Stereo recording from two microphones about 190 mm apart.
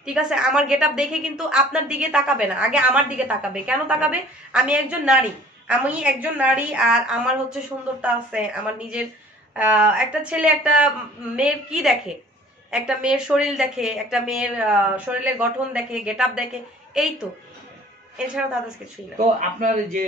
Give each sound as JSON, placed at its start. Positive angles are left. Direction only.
{"t": 0.0, "sound": "a woman's voice", "side_deg": -5}
{"t": 18.1, "sound": "a woman's voice", "side_deg": -5}
{"t": 19.1, "sound": "a man's voice", "side_deg": -40}